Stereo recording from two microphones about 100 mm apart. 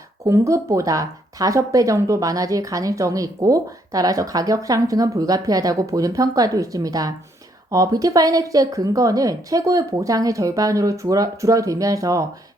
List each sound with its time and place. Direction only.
0.3 s speech: 30° right (ahead or behind)